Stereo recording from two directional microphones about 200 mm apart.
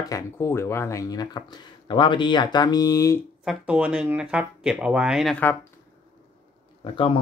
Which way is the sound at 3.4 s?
5° right (ahead or behind).